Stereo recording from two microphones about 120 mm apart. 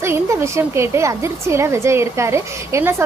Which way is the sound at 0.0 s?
20° right (ahead or behind).